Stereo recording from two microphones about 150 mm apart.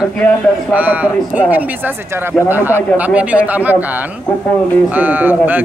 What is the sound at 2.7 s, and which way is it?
Speech, 15° left (ahead or behind).